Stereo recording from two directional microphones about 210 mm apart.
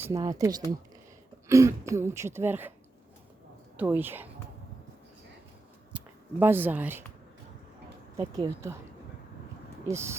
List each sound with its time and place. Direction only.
0.0 s speech: 15° right (ahead or behind)
3.8 s speech: 10° right (ahead or behind)
5.9 s a sound: 5° right (ahead or behind)
6.4 s speech: 10° right (ahead or behind)
8.1 s speech: 15° right (ahead or behind)
9.9 s speech: 10° right (ahead or behind)